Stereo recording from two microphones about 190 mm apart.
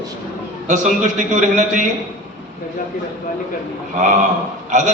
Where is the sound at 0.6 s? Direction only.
40° right (ahead or behind).